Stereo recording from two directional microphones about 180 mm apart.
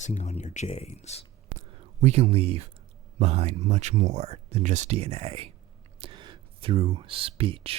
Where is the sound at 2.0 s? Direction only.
40° right (ahead or behind).